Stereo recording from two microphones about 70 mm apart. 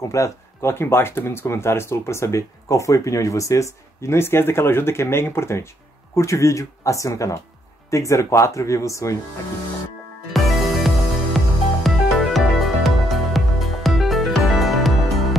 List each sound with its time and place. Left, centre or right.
0.1 s speech: left
10.3 s music: centre